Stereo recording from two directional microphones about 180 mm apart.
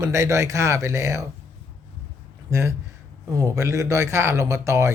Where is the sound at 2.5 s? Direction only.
15° right (ahead or behind).